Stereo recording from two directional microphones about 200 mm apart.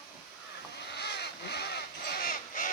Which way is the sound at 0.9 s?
55° left (ahead or behind).